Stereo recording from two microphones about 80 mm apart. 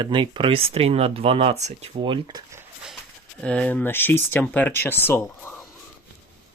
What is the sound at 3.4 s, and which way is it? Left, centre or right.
Speech, centre.